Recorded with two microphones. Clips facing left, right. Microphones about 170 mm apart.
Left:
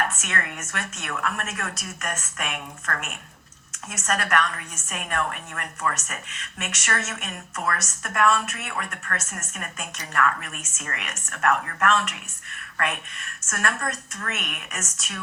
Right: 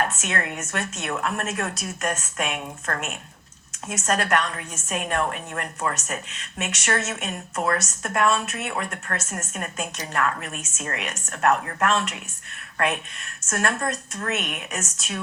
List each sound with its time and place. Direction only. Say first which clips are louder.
0.0 s a woman's voice: right 2 dB; 25° right (ahead or behind)